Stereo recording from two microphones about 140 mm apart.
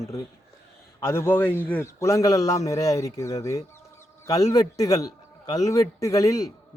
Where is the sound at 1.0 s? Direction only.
20° left (ahead or behind).